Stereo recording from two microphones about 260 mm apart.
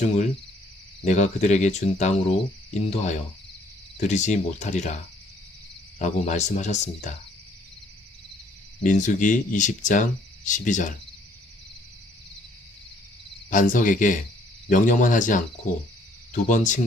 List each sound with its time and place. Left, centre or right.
1.0 s speech: left
6.0 s speech: left
8.8 s speech: left
13.5 s cricket: left
14.7 s speech: left